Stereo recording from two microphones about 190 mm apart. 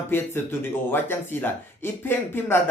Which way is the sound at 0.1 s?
10° left (ahead or behind).